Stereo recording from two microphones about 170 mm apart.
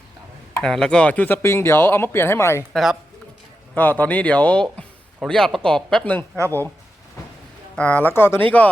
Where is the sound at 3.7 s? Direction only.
10° left (ahead or behind).